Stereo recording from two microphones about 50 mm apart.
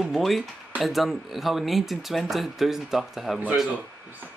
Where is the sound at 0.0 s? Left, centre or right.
Centre.